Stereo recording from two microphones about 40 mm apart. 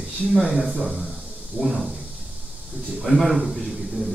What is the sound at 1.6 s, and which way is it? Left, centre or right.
Speech, right.